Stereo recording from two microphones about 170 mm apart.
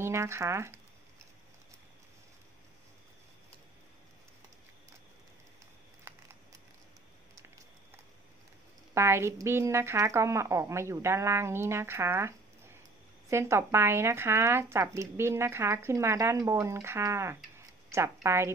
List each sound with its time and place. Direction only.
0.0 s speech: 15° right (ahead or behind)
6.1 s a sound: 15° right (ahead or behind)
8.9 s speech: 15° right (ahead or behind)